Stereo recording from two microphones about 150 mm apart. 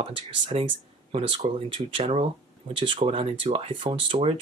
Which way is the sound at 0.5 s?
45° right (ahead or behind).